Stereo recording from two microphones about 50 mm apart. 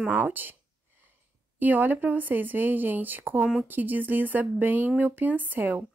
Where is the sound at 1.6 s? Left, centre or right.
Right.